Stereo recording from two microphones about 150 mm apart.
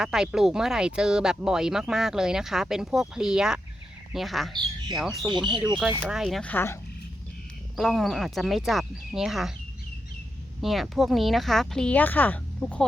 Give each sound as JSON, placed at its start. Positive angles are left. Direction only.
{"t": 0.0, "sound": "speech", "side_deg": -5}
{"t": 5.2, "sound": "speech", "side_deg": -30}
{"t": 6.0, "sound": "speech", "side_deg": -5}
{"t": 6.4, "sound": "speech", "side_deg": 15}
{"t": 7.8, "sound": "speech", "side_deg": 0}
{"t": 10.6, "sound": "speech", "side_deg": 0}